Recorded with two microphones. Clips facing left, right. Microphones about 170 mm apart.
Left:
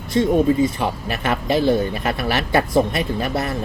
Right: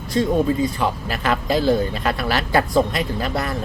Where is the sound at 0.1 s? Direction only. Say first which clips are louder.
Left 2 dB; 20° left (ahead or behind).